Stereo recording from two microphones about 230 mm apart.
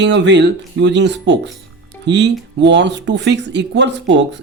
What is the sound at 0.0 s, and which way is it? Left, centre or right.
Speech, right.